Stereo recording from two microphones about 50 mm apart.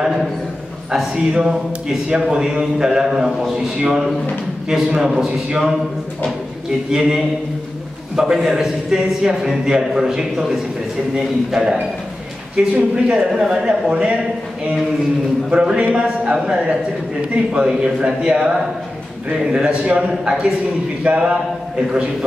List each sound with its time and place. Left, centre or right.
0.0 s a sound: centre
0.9 s a man's voice: centre
6.9 s a man's voice: centre
12.5 s a man's voice: right
15.5 s a man's voice: centre
19.6 s a man's voice: right
21.0 s a man's voice: centre